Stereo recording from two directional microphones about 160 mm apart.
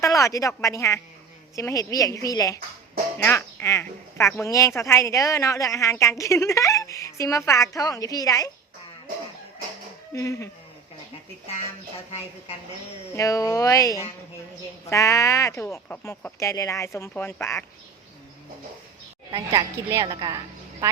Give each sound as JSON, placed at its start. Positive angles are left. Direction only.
{"t": 0.0, "sound": "speech", "side_deg": 20}
{"t": 10.1, "sound": "speech", "side_deg": 20}
{"t": 11.1, "sound": "speech", "side_deg": 40}
{"t": 13.1, "sound": "speech", "side_deg": 20}
{"t": 19.9, "sound": "a woman's voice", "side_deg": -20}